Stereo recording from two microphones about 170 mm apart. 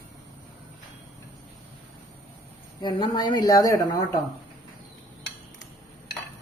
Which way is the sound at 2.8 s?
25° left (ahead or behind).